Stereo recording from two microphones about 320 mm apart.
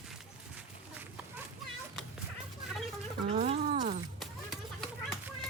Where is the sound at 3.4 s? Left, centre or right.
Right.